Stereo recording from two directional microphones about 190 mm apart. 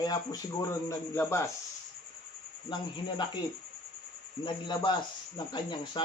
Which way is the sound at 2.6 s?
25° left (ahead or behind).